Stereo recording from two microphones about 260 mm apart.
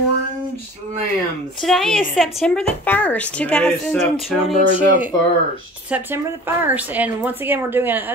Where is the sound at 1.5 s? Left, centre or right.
Centre.